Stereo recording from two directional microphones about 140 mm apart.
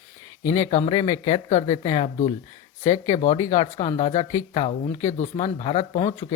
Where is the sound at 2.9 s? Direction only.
55° left (ahead or behind).